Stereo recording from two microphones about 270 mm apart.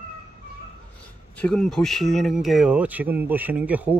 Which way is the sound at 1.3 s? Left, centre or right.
Centre.